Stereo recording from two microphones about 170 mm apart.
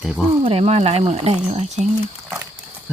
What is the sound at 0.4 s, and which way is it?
Speech, 35° right (ahead or behind).